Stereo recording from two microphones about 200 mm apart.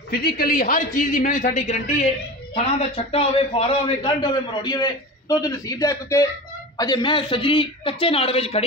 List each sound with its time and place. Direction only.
0.1 s a man's voice: 50° left (ahead or behind)
3.1 s a man's voice: 30° left (ahead or behind)